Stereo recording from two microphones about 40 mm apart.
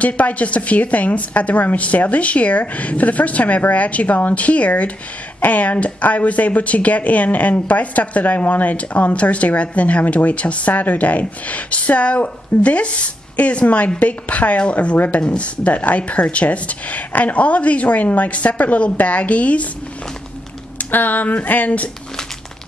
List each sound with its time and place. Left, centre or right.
0.0 s speech: left
20.7 s speech: left